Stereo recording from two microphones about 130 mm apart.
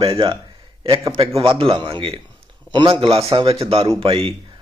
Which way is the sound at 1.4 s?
45° right (ahead or behind).